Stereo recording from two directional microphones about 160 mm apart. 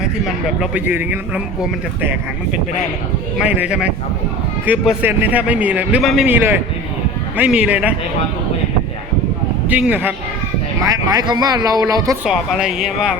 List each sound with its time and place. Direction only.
0.6 s a man's voice: 10° right (ahead or behind)
3.4 s a man's voice: 10° right (ahead or behind)
9.6 s a man's voice: 10° right (ahead or behind)
10.8 s a man's voice: 20° right (ahead or behind)
12.2 s speech: 5° right (ahead or behind)